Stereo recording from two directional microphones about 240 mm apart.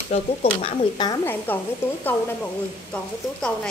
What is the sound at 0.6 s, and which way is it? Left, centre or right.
Speech, centre.